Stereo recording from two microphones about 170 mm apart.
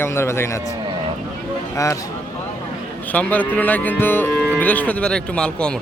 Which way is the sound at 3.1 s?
10° left (ahead or behind).